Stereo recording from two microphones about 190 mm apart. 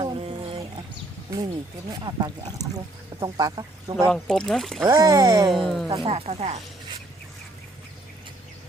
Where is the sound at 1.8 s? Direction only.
25° right (ahead or behind).